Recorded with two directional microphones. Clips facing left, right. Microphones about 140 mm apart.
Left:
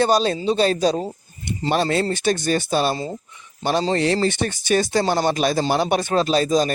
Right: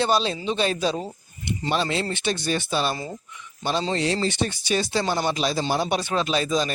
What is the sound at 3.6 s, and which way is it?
Speech, 50° left (ahead or behind).